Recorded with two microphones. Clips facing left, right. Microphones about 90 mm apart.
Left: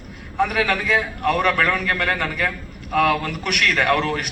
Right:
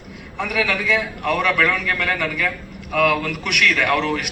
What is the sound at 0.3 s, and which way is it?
A man's voice, 45° left (ahead or behind).